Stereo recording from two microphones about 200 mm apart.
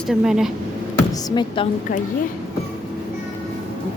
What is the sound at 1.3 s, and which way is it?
Speech, 20° left (ahead or behind).